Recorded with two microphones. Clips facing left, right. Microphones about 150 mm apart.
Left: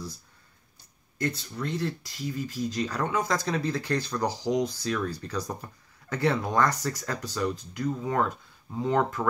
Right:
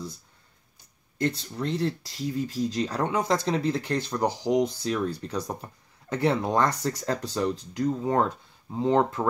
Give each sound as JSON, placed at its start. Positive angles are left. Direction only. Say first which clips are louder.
{"t": 1.1, "sound": "speech", "louder": "right 3 dB", "side_deg": -30}